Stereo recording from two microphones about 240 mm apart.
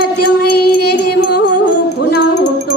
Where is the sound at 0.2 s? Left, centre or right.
Left.